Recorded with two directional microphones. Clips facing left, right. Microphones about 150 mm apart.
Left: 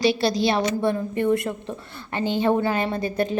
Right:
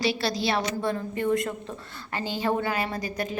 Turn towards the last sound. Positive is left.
turn(degrees=25)  # may be behind; listen again after turning